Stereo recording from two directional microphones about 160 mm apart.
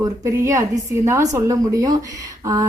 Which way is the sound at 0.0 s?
20° right (ahead or behind).